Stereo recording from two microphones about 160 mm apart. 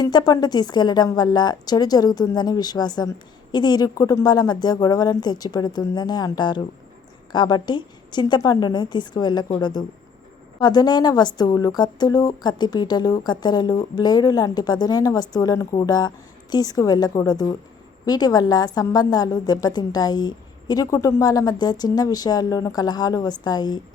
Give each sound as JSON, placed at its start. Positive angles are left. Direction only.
{"t": 0.0, "sound": "a woman's voice", "side_deg": 25}